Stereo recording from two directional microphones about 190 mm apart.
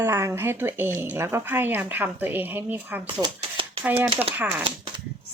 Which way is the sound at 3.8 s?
10° right (ahead or behind).